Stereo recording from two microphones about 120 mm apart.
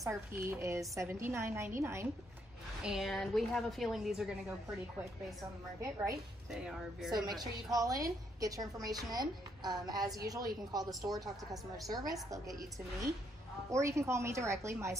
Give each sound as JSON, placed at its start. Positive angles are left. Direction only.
{"t": 0.0, "sound": "a woman's voice", "side_deg": -25}
{"t": 2.8, "sound": "a woman's voice", "side_deg": -5}
{"t": 5.8, "sound": "a woman's voice", "side_deg": -25}
{"t": 6.5, "sound": "a woman's voice", "side_deg": -5}
{"t": 7.1, "sound": "a woman's voice", "side_deg": -35}
{"t": 13.7, "sound": "a woman's voice", "side_deg": -25}